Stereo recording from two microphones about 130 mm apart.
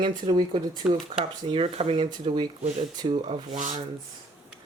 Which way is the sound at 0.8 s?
10° right (ahead or behind).